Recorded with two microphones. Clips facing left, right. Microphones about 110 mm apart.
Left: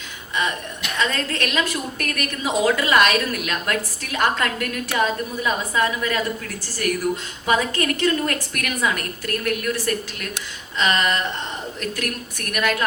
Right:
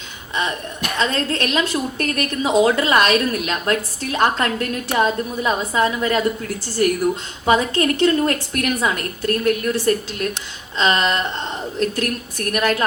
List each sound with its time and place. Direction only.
0.9 s a woman's voice: 30° right (ahead or behind)